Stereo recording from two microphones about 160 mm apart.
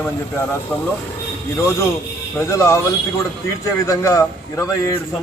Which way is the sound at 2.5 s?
20° left (ahead or behind).